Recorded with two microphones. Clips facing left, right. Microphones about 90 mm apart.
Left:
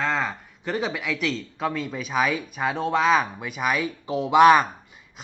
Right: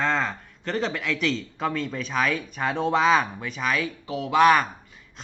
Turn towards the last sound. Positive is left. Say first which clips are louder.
# left 3 dB
turn(degrees=15)  # may be behind; listen again after turning